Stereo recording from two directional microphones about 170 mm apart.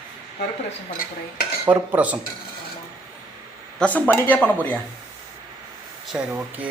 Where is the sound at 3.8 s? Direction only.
10° left (ahead or behind).